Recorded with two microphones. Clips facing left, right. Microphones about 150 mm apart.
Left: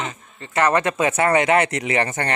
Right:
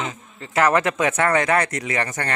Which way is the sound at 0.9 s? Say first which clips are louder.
Left 1 dB; 10° left (ahead or behind).